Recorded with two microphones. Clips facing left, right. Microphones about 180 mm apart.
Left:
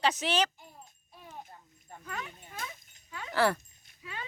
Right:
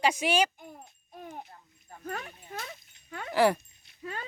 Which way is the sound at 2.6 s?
55° right (ahead or behind).